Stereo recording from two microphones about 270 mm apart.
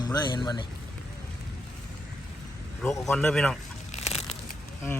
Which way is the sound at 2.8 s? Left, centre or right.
Centre.